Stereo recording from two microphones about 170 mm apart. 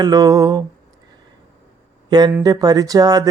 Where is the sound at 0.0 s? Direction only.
20° right (ahead or behind).